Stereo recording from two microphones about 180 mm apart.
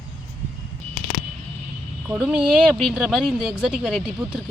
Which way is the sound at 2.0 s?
10° right (ahead or behind).